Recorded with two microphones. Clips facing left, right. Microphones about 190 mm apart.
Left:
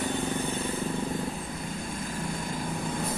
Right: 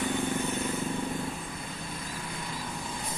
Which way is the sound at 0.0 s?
35° left (ahead or behind).